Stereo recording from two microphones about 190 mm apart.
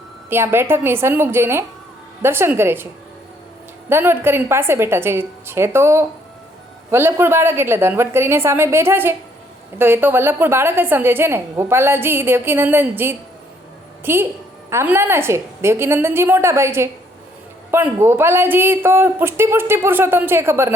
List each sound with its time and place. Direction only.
0.3 s a woman's voice: 10° right (ahead or behind)
3.8 s a woman's voice: 10° right (ahead or behind)